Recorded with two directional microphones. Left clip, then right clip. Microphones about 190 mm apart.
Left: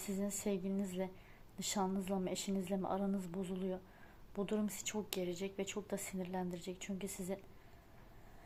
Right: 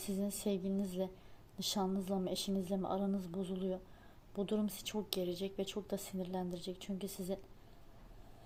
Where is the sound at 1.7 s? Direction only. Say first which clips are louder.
Left 1 dB; 5° right (ahead or behind).